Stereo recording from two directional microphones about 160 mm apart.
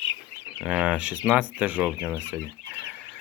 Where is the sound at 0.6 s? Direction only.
5° right (ahead or behind).